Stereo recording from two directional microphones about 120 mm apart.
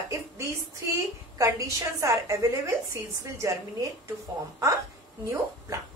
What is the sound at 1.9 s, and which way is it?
A woman's voice, 25° right (ahead or behind).